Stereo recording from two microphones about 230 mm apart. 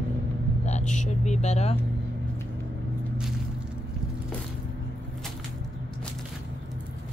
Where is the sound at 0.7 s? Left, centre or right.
Left.